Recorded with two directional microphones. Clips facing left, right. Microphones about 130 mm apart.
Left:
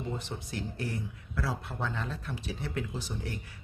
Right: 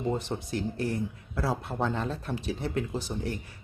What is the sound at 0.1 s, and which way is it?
Speech, 35° right (ahead or behind).